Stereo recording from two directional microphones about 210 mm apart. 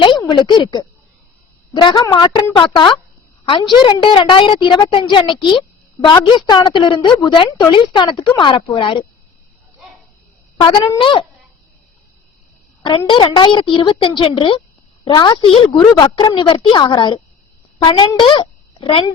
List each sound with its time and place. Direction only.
0.0 s a woman's voice: 20° left (ahead or behind)
10.6 s a woman's voice: 20° left (ahead or behind)
12.8 s a woman's voice: 20° left (ahead or behind)